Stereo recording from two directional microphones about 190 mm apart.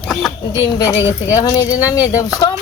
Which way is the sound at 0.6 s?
20° left (ahead or behind).